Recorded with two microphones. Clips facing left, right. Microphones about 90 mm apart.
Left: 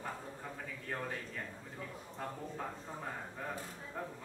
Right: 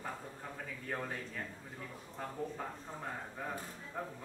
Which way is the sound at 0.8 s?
Centre (ahead or behind).